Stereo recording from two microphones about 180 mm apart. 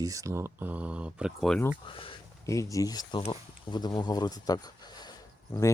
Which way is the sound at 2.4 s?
15° left (ahead or behind).